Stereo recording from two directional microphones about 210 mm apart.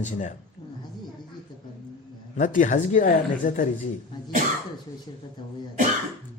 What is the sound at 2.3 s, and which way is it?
Speech, 40° left (ahead or behind).